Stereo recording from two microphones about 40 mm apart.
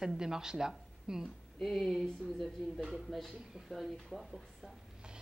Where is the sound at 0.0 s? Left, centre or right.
Centre.